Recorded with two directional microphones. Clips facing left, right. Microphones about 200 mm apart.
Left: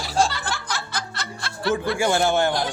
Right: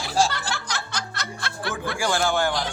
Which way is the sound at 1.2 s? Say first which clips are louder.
Even; 55° right (ahead or behind).